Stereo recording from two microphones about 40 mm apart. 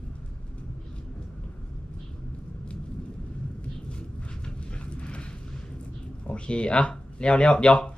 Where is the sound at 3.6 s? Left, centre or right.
Left.